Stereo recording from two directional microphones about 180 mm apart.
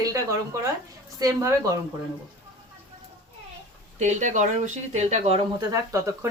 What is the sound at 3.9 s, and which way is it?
Speech, 40° right (ahead or behind).